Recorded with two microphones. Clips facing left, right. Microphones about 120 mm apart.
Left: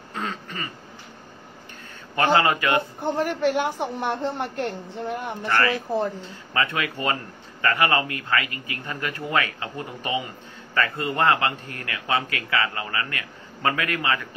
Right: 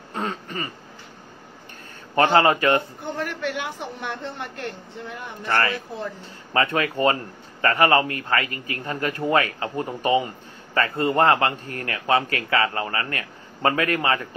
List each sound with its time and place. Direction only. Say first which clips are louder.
0.1 s throat clearing: right 3 dB; 40° right (ahead or behind)
2.1 s a man's voice: right 3 dB; 35° right (ahead or behind)
3.2 s a woman's voice: left 6 dB; 45° left (ahead or behind)
6.5 s a man's voice: right 4 dB; 35° right (ahead or behind)